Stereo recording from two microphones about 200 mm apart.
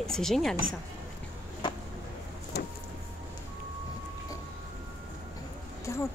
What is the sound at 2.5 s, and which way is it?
Vehicle, 55° left (ahead or behind).